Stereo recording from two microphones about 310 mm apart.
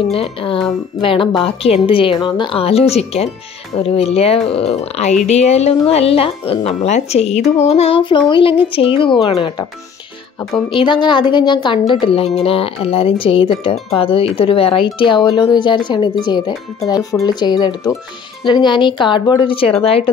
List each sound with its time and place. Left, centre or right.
0.1 s speech: centre